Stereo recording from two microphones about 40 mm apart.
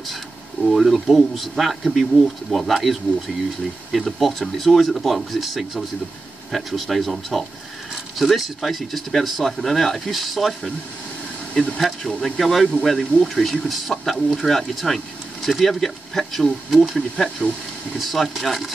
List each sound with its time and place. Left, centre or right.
0.7 s speech: centre
11.5 s speech: left
12.0 s speech: centre